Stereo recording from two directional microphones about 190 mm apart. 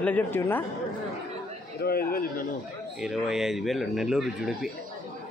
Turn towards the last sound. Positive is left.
turn(degrees=0)  # may be behind; listen again after turning